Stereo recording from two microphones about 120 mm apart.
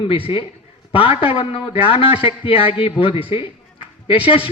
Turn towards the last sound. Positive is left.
turn(degrees=50)  # may be behind; listen again after turning